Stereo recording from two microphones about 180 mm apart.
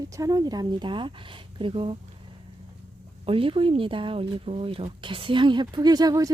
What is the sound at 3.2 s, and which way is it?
Speech, 30° right (ahead or behind).